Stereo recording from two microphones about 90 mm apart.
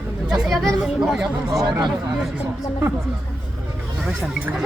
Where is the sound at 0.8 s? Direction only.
5° right (ahead or behind).